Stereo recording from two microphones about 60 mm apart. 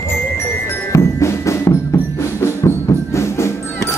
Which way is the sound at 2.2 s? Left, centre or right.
Left.